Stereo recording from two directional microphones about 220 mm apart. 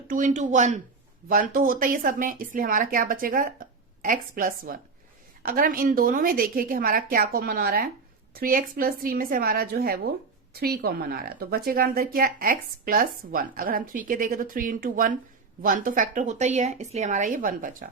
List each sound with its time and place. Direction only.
0.1 s a woman's voice: 35° right (ahead or behind)